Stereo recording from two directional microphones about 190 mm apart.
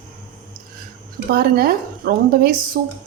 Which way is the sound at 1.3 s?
55° right (ahead or behind).